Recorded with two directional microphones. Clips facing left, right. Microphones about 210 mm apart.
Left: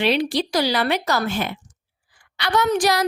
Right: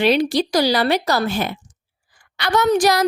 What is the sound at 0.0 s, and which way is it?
A woman's voice, 40° right (ahead or behind).